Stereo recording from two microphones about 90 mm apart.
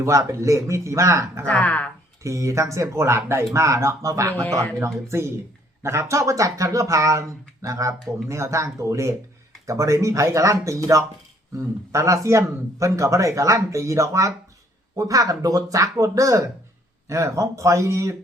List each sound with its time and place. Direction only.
0.0 s a man's voice: 35° right (ahead or behind)
1.5 s speech: 15° left (ahead or behind)
2.2 s a man's voice: 35° right (ahead or behind)